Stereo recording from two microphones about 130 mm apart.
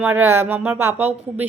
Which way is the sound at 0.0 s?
15° right (ahead or behind).